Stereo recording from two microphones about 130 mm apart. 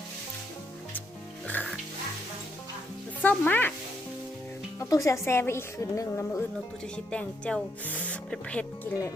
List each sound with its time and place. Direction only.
3.2 s speech: 15° left (ahead or behind)
4.8 s a woman's voice: 25° left (ahead or behind)
6.9 s speech: 10° left (ahead or behind)